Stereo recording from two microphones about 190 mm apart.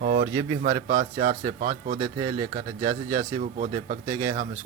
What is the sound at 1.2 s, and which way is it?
Speech, 40° right (ahead or behind).